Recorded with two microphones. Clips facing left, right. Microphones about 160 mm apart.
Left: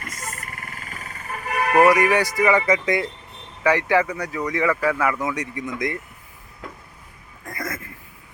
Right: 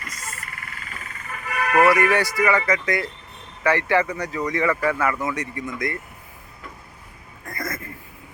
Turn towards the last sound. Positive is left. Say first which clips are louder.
# even
turn(degrees=10)  # may be behind; listen again after turning